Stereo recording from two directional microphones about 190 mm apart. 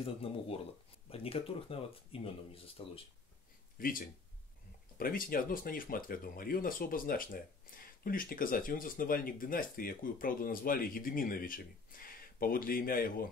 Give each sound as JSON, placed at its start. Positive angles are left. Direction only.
{"t": 0.0, "sound": "speech", "side_deg": 30}
{"t": 3.7, "sound": "speech", "side_deg": 50}